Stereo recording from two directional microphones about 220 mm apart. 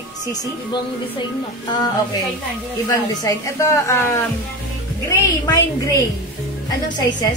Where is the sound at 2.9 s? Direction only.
15° left (ahead or behind).